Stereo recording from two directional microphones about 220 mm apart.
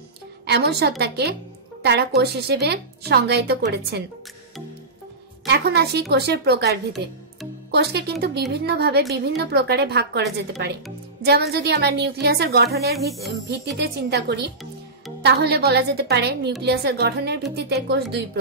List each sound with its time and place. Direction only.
0.5 s a woman's voice: 45° right (ahead or behind)
5.5 s a woman's voice: 45° right (ahead or behind)